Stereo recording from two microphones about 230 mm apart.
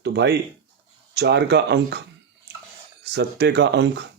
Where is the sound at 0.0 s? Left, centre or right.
Right.